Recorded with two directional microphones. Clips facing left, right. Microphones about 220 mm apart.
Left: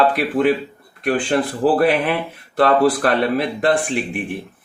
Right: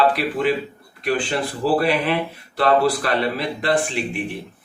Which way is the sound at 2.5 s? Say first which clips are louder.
Left 3 dB; 50° left (ahead or behind).